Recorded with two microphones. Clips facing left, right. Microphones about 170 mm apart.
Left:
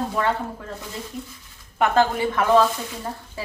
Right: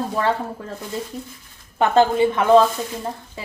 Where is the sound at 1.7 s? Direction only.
25° right (ahead or behind).